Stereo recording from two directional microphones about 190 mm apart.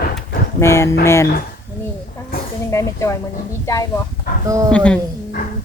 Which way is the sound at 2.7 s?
15° left (ahead or behind).